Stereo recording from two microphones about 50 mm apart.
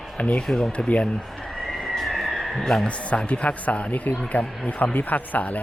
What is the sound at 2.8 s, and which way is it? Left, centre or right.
Speech, left.